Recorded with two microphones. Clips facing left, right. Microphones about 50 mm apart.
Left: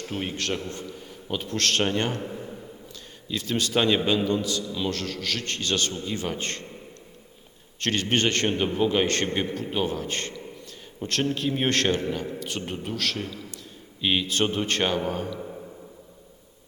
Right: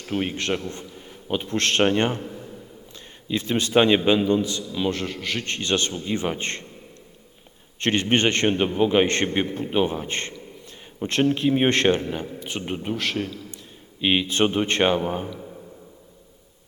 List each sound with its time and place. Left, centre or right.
0.0 s a man's voice: centre
2.2 s a sound: centre
3.2 s a man's voice: right
7.8 s a man's voice: right